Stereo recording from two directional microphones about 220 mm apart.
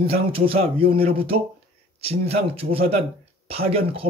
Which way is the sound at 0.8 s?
40° right (ahead or behind).